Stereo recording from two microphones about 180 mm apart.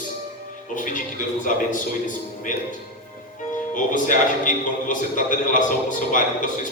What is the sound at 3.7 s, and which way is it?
A man's voice, 45° left (ahead or behind).